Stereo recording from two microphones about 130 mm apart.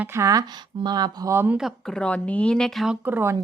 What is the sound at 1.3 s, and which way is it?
Speech, 15° right (ahead or behind).